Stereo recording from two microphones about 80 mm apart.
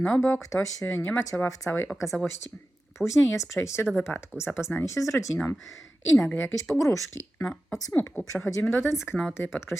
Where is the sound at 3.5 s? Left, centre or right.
Left.